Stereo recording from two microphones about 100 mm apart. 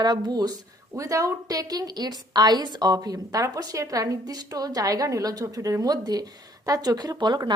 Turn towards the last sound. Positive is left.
turn(degrees=-45)  # may be behind; listen again after turning